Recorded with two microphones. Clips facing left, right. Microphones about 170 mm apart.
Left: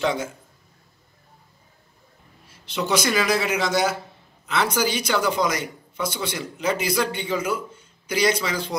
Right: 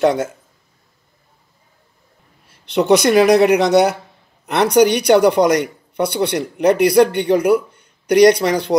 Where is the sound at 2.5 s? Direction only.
65° right (ahead or behind).